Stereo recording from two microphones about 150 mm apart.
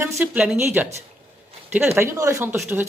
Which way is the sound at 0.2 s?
10° right (ahead or behind).